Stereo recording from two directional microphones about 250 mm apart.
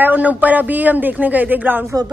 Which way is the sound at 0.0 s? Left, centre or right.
Centre.